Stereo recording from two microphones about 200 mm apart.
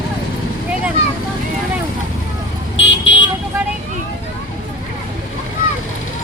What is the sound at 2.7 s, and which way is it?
Vehicle, 70° left (ahead or behind).